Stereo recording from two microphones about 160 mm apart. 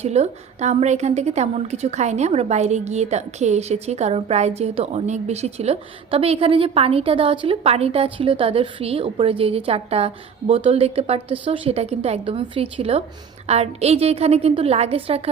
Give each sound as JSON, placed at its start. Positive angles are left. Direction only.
{"t": 0.0, "sound": "a woman's voice", "side_deg": -45}